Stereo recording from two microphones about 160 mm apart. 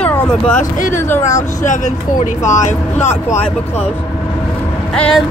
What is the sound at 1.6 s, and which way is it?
Speech, 50° left (ahead or behind).